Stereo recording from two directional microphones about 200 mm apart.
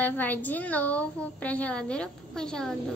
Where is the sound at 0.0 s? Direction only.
10° left (ahead or behind).